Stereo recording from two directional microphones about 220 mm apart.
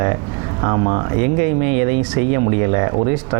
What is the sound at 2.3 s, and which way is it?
Speech, 20° right (ahead or behind).